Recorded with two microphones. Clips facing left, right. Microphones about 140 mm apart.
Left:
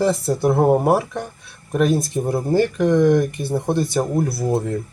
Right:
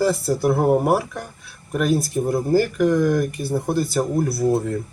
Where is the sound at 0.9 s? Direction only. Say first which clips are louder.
Left 2 dB; centre (ahead or behind).